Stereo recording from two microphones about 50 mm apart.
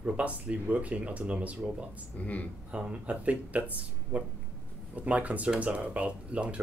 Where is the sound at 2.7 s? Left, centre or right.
Right.